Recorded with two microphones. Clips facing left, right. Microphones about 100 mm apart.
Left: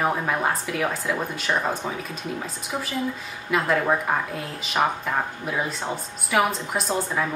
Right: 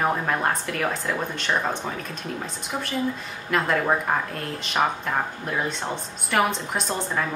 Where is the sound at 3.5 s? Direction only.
5° left (ahead or behind).